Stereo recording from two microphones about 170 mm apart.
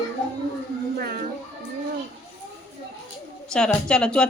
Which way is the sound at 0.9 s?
60° right (ahead or behind).